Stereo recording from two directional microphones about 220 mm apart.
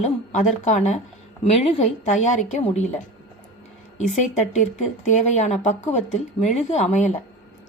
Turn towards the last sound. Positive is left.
turn(degrees=30)  # may be behind; listen again after turning